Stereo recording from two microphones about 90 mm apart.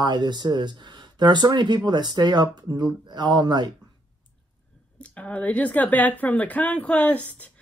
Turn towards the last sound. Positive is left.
turn(degrees=15)  # may be behind; listen again after turning